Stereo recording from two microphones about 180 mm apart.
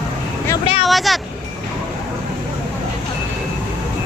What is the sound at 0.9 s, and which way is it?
Speech, centre (ahead or behind).